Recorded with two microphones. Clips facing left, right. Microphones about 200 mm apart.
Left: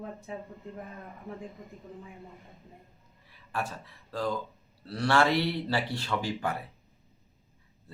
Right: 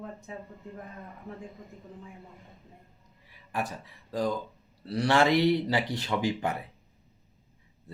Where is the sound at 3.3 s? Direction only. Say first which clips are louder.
Right 1 dB; 15° right (ahead or behind).